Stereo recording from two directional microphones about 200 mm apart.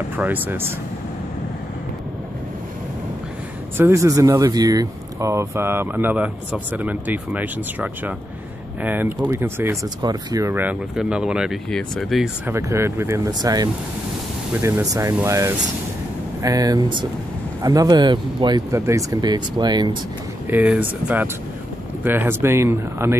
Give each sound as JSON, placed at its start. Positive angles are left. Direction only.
{"t": 0.1, "sound": "speech", "side_deg": -10}
{"t": 3.7, "sound": "speech", "side_deg": -15}
{"t": 12.5, "sound": "speech", "side_deg": -15}
{"t": 20.4, "sound": "speech", "side_deg": -10}